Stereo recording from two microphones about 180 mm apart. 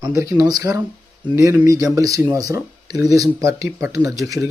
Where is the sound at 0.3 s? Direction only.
20° right (ahead or behind).